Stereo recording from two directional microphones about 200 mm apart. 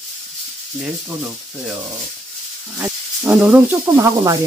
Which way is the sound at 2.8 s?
10° right (ahead or behind).